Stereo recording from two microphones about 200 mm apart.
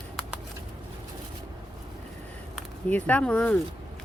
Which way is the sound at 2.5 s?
5° left (ahead or behind).